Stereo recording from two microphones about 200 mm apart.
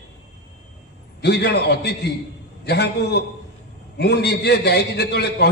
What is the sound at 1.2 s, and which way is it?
A man's voice, 55° left (ahead or behind).